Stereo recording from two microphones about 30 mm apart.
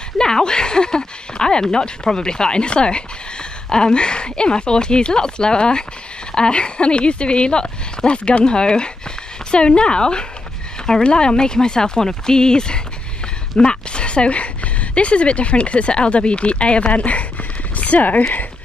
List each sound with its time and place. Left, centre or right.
0.2 s speech: left